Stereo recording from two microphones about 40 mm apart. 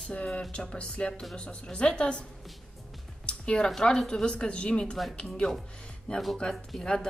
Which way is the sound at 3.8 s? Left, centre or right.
Centre.